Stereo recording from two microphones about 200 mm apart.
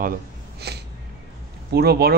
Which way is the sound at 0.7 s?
55° right (ahead or behind).